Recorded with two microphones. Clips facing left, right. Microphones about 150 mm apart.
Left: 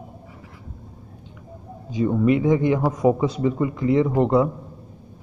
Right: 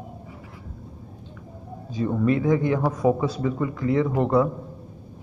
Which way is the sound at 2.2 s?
20° left (ahead or behind).